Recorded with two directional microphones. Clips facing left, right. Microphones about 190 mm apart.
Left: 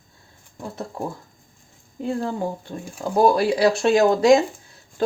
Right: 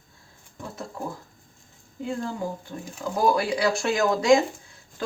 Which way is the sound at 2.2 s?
30° left (ahead or behind).